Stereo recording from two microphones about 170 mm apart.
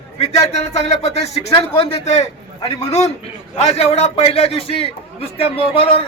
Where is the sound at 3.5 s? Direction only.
40° left (ahead or behind).